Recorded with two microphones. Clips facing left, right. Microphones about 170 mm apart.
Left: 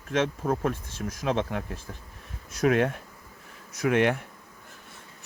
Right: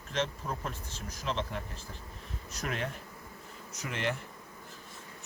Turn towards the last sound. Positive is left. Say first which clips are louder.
# left 12 dB
turn(degrees=60)  # may be behind; listen again after turning